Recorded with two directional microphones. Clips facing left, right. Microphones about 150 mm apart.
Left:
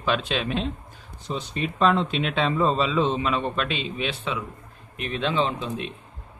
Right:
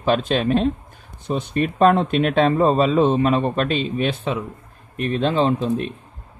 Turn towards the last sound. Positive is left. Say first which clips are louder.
# right 7 dB
turn(degrees=-45)  # may be behind; listen again after turning